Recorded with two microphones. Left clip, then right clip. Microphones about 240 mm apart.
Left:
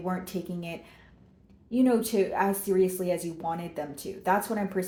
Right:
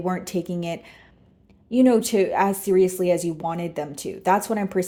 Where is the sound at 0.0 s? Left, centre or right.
Right.